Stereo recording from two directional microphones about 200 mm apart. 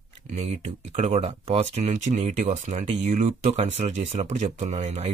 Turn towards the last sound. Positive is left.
turn(degrees=-35)  # may be behind; listen again after turning